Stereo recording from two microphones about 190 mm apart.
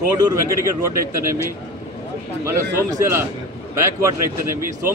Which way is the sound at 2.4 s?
15° right (ahead or behind).